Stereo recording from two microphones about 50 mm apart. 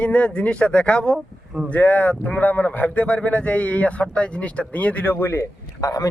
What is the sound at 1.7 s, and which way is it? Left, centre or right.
Speech, left.